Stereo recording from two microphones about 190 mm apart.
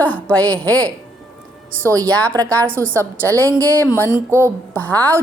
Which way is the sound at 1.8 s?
15° right (ahead or behind).